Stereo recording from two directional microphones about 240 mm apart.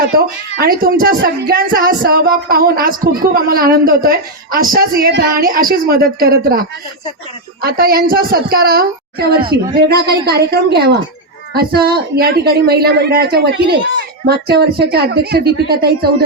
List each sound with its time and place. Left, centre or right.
0.6 s speech: right